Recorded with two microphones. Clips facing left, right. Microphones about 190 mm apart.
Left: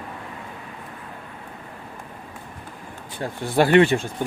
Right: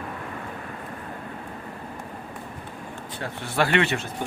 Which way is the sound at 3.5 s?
35° left (ahead or behind).